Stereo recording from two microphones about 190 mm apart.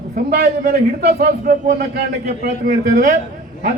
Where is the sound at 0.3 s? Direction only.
55° right (ahead or behind).